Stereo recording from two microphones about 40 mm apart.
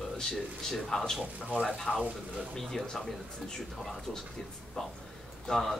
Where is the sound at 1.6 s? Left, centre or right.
Centre.